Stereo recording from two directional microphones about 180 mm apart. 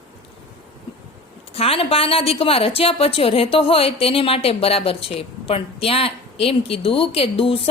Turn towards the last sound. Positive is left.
turn(degrees=30)  # may be behind; listen again after turning